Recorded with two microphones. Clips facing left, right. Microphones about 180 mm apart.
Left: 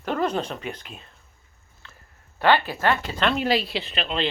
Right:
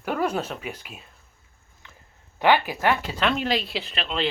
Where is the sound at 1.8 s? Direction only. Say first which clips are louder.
Even; 15° right (ahead or behind).